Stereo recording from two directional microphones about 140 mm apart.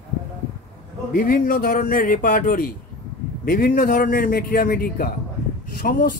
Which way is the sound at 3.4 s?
90° left.